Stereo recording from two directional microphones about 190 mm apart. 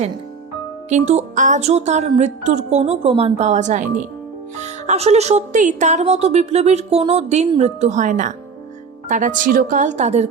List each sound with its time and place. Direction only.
0.9 s a woman's voice: 35° right (ahead or behind)